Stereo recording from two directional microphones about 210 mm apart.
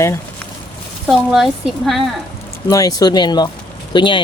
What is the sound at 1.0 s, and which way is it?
Speech, centre (ahead or behind).